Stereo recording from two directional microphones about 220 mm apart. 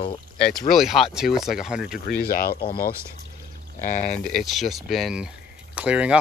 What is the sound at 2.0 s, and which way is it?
Speech, 45° left (ahead or behind).